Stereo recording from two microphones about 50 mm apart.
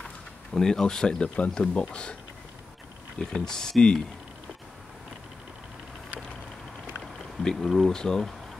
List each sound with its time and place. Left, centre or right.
0.5 s speech: centre
3.3 s speech: centre
7.0 s a sound: centre
7.9 s speech: centre